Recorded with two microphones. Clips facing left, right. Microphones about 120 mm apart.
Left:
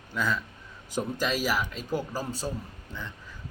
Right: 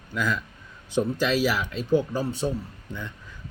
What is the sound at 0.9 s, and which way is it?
A man's voice, 45° left (ahead or behind).